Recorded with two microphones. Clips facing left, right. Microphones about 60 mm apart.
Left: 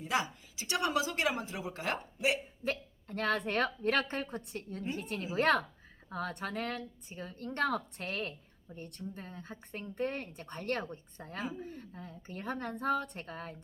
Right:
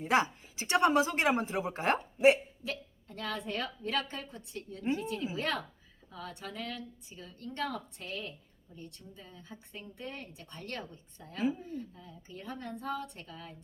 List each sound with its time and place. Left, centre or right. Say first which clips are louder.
0.0 s a woman's voice: right 5 dB; right
2.6 s a woman's voice: left 4 dB; left
4.8 s a woman's voice: right 6 dB; right
5.2 s a woman's voice: left 5 dB; left